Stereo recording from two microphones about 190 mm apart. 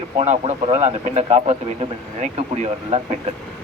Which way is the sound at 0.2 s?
35° right (ahead or behind).